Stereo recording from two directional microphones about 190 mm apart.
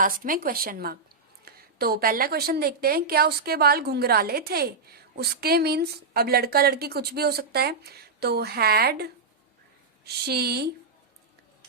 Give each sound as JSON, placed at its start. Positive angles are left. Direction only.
{"t": 0.0, "sound": "a woman's voice", "side_deg": -45}